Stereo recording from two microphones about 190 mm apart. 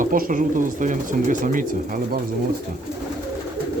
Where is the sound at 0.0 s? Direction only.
45° right (ahead or behind).